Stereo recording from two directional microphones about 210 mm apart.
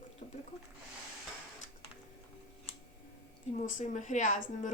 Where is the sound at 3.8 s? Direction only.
35° left (ahead or behind).